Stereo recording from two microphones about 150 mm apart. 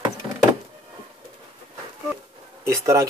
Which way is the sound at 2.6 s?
20° right (ahead or behind).